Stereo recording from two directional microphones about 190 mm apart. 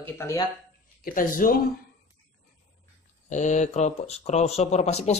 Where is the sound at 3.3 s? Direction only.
40° left (ahead or behind).